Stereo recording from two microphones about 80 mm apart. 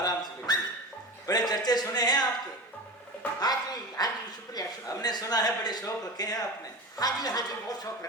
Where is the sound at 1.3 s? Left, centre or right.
Left.